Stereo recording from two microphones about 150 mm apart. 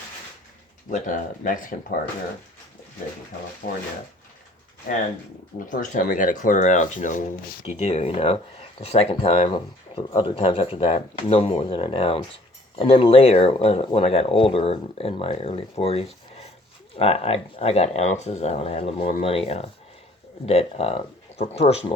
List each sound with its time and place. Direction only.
0.9 s speech: 60° left (ahead or behind)
3.6 s speech: 70° left (ahead or behind)
5.5 s speech: 60° left (ahead or behind)
7.8 s speech: 45° left (ahead or behind)
9.9 s speech: 35° left (ahead or behind)